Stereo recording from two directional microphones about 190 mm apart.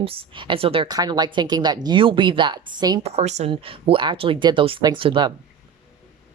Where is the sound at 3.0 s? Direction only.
35° right (ahead or behind).